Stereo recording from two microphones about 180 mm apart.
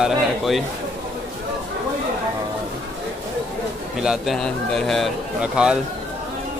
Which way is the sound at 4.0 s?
Centre (ahead or behind).